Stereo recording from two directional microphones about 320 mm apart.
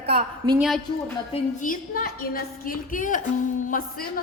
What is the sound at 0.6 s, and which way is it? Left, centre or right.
Speech, centre.